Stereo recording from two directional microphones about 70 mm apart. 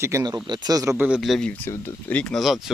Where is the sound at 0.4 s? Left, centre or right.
Right.